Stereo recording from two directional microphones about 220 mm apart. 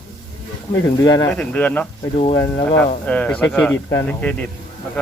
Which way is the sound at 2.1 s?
30° left (ahead or behind).